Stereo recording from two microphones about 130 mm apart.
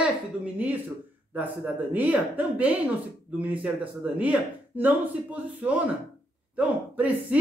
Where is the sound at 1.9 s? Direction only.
15° right (ahead or behind).